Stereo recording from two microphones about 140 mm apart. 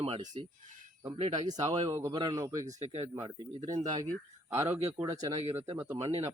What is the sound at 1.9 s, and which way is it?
Speech, 20° right (ahead or behind).